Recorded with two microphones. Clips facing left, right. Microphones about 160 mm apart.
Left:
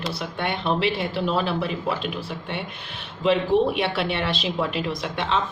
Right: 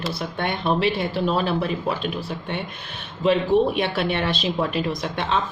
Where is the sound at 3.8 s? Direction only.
45° right (ahead or behind).